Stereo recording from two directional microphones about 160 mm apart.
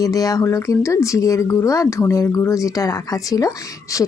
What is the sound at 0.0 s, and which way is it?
Speech, 20° left (ahead or behind).